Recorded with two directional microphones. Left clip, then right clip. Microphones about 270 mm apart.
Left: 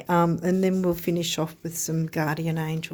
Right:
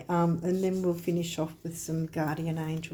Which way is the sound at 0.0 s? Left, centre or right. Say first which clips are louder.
Left 6 dB; left.